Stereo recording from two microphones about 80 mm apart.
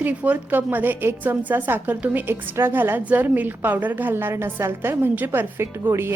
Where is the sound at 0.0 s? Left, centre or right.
Centre.